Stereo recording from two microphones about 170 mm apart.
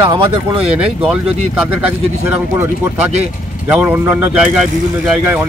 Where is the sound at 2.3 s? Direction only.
15° right (ahead or behind).